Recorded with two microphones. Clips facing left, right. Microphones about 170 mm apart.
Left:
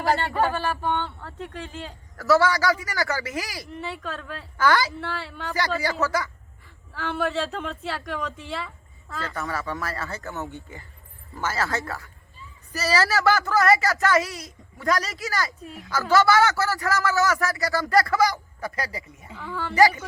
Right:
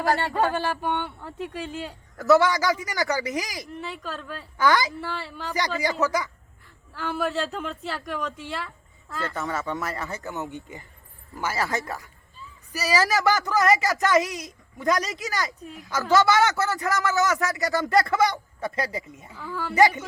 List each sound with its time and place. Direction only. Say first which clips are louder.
0.5 s a man's voice: even; 15° right (ahead or behind)
1.7 s speech: right 3 dB; centre (ahead or behind)
2.1 s a man's voice: right 1 dB; 20° right (ahead or behind)
3.7 s speech: left 1 dB; centre (ahead or behind)
4.5 s a man's voice: even; 15° right (ahead or behind)
4.9 s speech: even; centre (ahead or behind)
5.5 s a man's voice: even; 15° right (ahead or behind)
6.9 s speech: left 1 dB; centre (ahead or behind)
9.3 s a man's voice: even; 20° right (ahead or behind)
15.6 s speech: left 1 dB; centre (ahead or behind)
15.9 s a man's voice: left 1 dB; 20° right (ahead or behind)
19.3 s speech: left 1 dB; 20° left (ahead or behind)
19.7 s a man's voice: left 1 dB; 20° right (ahead or behind)